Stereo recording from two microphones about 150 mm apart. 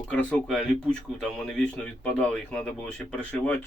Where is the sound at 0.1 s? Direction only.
10° left (ahead or behind).